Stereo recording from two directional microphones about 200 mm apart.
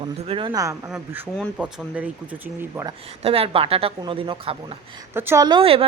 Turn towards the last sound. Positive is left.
turn(degrees=-30)  # may be behind; listen again after turning